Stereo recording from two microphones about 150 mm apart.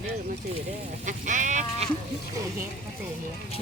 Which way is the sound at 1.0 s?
55° right (ahead or behind).